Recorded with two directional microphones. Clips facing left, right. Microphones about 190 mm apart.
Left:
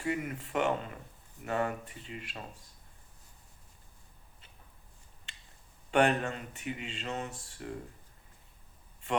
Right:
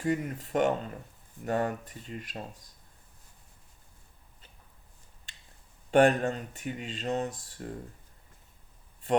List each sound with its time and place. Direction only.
0.0 s speech: 40° right (ahead or behind)
5.9 s speech: 40° right (ahead or behind)